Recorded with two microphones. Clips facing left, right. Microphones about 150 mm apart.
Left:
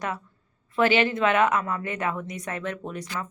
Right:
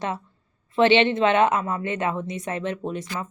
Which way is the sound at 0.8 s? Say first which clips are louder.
Right 4 dB; 25° right (ahead or behind).